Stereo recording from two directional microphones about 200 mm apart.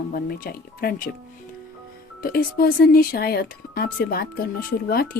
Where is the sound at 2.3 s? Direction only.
50° left (ahead or behind).